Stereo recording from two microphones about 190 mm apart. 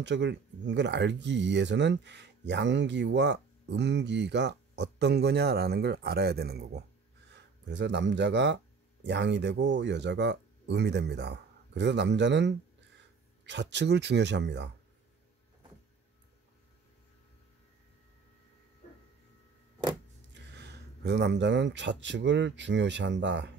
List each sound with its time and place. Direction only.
0.0 s speech: 65° right (ahead or behind)
7.3 s speech: 70° right (ahead or behind)
20.3 s speech: 65° right (ahead or behind)